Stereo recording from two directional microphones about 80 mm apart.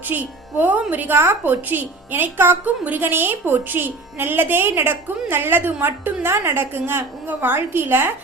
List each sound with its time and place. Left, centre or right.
0.1 s speech: right